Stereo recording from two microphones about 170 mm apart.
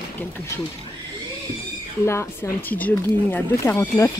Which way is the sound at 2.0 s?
15° left (ahead or behind).